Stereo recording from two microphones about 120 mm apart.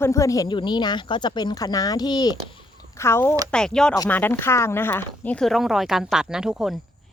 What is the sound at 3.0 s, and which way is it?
Speech, 20° left (ahead or behind).